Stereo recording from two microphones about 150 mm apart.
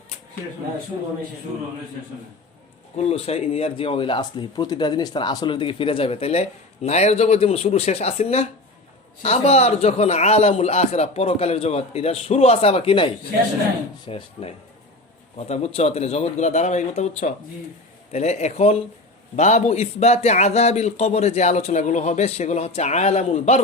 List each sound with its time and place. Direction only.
3.0 s speech: 45° left (ahead or behind)
14.1 s speech: 40° left (ahead or behind)